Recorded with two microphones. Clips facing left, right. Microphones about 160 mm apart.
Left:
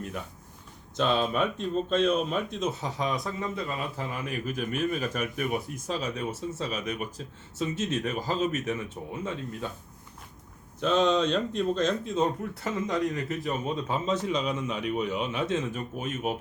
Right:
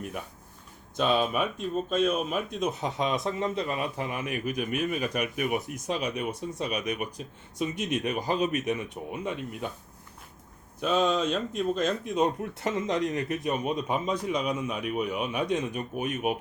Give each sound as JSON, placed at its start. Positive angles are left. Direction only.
{"t": 0.9, "sound": "speech", "side_deg": -15}
{"t": 10.8, "sound": "speech", "side_deg": -10}